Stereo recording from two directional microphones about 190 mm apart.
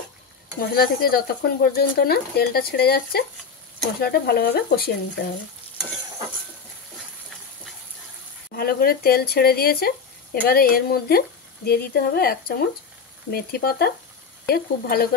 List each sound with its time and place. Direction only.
0.6 s speech: 50° left (ahead or behind)
8.5 s speech: 55° left (ahead or behind)